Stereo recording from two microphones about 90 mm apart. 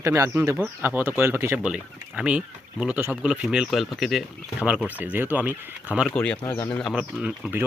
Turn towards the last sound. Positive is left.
turn(degrees=-10)  # may be behind; listen again after turning